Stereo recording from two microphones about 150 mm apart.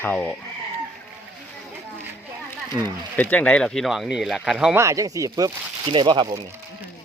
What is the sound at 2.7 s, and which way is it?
Speech, 20° right (ahead or behind).